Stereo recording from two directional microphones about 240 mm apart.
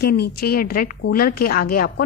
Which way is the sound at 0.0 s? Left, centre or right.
Left.